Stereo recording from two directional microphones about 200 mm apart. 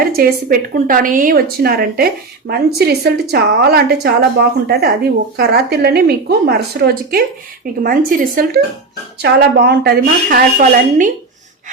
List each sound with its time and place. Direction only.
0.0 s a woman's voice: 45° right (ahead or behind)
9.1 s a woman's voice: 55° right (ahead or behind)